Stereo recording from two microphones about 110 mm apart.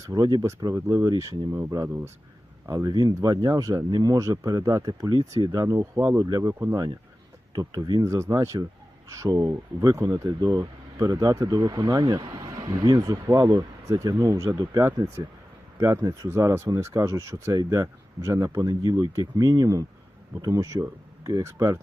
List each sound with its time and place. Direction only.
0.0 s speech: 35° right (ahead or behind); by 6.2 s 20° right (ahead or behind)
6.2 s speech: 35° right (ahead or behind)
7.5 s speech: 35° right (ahead or behind)